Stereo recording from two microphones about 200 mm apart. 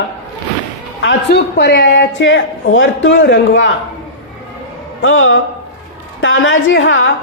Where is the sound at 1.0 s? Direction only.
60° left (ahead or behind).